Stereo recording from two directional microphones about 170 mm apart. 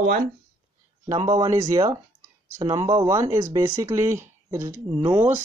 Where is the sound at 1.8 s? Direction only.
20° right (ahead or behind).